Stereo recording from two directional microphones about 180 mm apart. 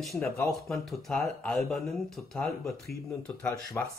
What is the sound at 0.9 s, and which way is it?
Speech, centre (ahead or behind).